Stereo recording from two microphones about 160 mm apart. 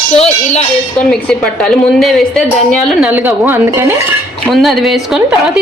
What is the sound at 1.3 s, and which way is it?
A woman's voice, 5° left (ahead or behind).